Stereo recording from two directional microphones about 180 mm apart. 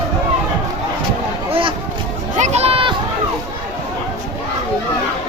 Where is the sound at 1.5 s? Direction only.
30° right (ahead or behind).